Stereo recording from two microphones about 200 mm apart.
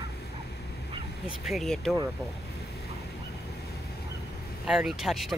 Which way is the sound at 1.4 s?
Centre (ahead or behind).